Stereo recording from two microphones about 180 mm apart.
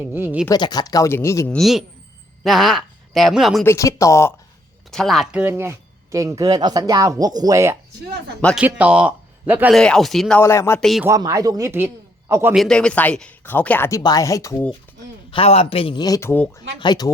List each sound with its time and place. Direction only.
0.0 s speech: 10° right (ahead or behind)
0.5 s speech: 20° left (ahead or behind)
1.5 s speech: centre (ahead or behind)
3.6 s speech: 15° left (ahead or behind)
4.9 s speech: centre (ahead or behind)
9.7 s speech: 5° left (ahead or behind)
10.4 s speech: 15° left (ahead or behind)
10.8 s speech: centre (ahead or behind)
11.0 s speech: 15° right (ahead or behind)
12.5 s speech: 5° left (ahead or behind)
15.3 s speech: 30° left (ahead or behind); by 16.5 s 10° left (ahead or behind)
16.8 s speech: 25° left (ahead or behind)